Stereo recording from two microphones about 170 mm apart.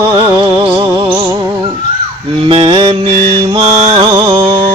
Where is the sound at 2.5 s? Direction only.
30° right (ahead or behind).